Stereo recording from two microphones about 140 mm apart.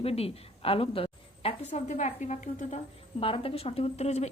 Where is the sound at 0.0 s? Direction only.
45° left (ahead or behind).